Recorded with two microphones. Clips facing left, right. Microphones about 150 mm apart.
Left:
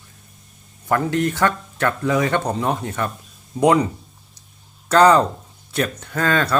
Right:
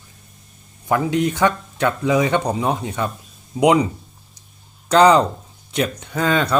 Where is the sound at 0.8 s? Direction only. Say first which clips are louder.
Right 1 dB; 10° right (ahead or behind).